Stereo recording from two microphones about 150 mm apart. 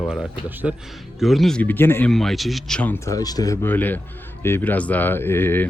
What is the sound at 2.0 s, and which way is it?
Speech, centre (ahead or behind).